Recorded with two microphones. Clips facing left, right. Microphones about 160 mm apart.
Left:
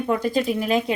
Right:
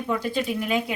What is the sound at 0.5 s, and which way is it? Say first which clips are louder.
Speech: left 4 dB; 35° left (ahead or behind).